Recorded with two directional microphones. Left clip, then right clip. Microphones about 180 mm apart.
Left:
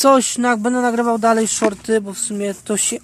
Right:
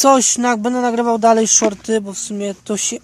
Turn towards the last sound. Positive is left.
turn(degrees=-10)  # may be behind; listen again after turning